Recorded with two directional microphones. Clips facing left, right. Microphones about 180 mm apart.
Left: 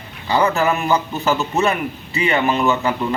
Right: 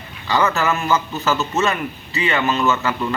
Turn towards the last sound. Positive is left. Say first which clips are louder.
# left 2 dB
turn(degrees=15)  # may be behind; listen again after turning